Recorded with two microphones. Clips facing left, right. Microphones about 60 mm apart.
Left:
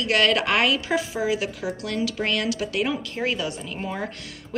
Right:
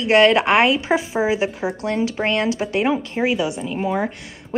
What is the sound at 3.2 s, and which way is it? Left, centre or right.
Speech, centre.